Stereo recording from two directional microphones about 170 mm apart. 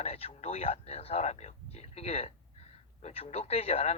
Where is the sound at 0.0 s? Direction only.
40° left (ahead or behind).